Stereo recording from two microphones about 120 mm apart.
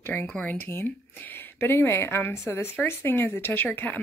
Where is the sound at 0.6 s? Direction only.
15° left (ahead or behind).